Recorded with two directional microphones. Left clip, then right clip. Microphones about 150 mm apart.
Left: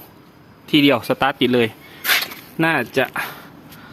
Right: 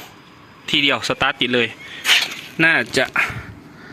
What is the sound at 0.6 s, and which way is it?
Speech, 5° left (ahead or behind).